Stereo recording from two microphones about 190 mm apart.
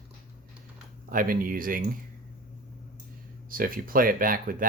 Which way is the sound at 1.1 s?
45° right (ahead or behind).